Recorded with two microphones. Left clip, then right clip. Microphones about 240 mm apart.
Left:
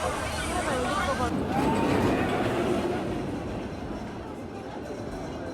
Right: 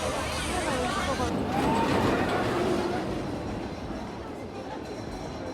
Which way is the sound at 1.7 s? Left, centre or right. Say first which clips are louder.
Right 1 dB; centre.